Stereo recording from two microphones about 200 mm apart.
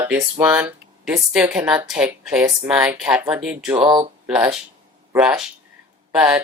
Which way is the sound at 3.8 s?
20° right (ahead or behind).